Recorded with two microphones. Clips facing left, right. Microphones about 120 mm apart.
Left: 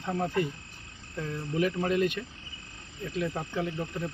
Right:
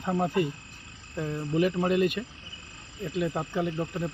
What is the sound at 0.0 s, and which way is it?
Speech, 15° right (ahead or behind).